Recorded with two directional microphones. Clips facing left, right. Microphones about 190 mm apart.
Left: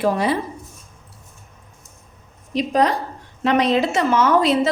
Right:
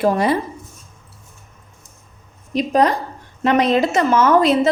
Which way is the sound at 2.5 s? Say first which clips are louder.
Right 2 dB; 45° right (ahead or behind).